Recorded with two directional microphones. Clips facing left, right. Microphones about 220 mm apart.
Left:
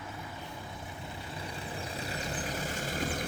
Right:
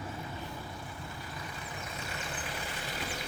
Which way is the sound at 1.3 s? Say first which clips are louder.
Left 3 dB; 30° left (ahead or behind).